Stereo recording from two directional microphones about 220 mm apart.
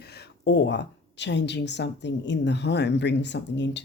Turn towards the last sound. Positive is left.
turn(degrees=55)  # may be behind; listen again after turning